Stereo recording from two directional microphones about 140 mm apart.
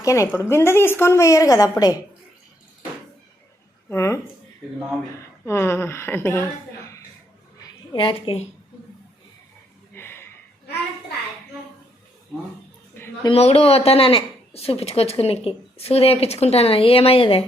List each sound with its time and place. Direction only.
0.0 s a woman's voice: 20° left (ahead or behind)
3.8 s a woman's voice: 20° left (ahead or behind)
5.5 s speech: 20° left (ahead or behind)
7.9 s a woman's voice: 40° left (ahead or behind)
9.9 s a sound: 15° left (ahead or behind)
13.0 s a sound: 15° left (ahead or behind)
13.3 s speech: 45° left (ahead or behind)